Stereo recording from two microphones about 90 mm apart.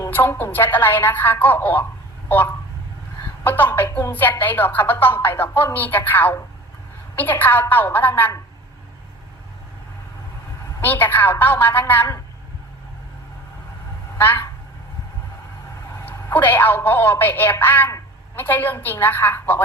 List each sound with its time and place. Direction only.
0.1 s speech: 20° left (ahead or behind)
3.4 s speech: 20° left (ahead or behind)
10.8 s speech: 25° left (ahead or behind)
14.2 s speech: 25° left (ahead or behind)
16.0 s speech: 20° left (ahead or behind)